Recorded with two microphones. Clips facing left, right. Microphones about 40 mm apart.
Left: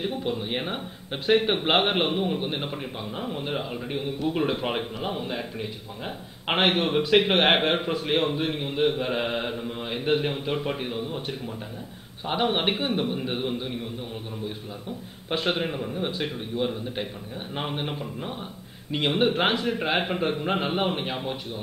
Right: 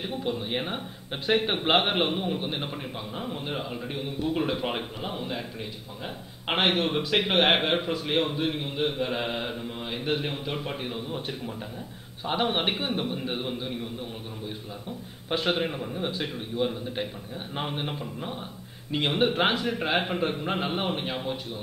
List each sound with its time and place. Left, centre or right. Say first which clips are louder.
0.2 s a man's voice: left 1 dB; centre
12.5 s a man's voice: left 2 dB; centre
15.2 s a man's voice: even; centre